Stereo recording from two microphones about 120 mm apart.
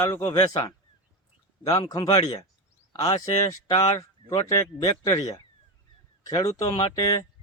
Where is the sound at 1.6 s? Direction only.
30° left (ahead or behind).